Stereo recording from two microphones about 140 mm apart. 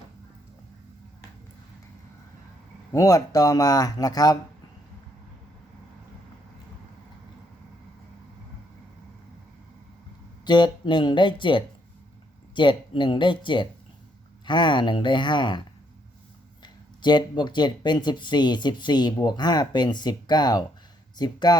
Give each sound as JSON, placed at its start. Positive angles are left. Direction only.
{"t": 2.9, "sound": "speech", "side_deg": 25}
{"t": 10.4, "sound": "speech", "side_deg": 35}
{"t": 16.6, "sound": "speech", "side_deg": 30}